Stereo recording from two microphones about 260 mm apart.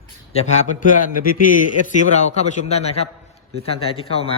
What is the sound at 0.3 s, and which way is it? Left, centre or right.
A man's voice, left.